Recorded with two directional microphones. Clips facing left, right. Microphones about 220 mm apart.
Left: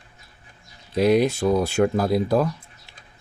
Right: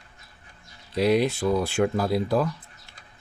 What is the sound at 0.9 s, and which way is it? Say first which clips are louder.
Speech: left 3 dB; 45° left (ahead or behind).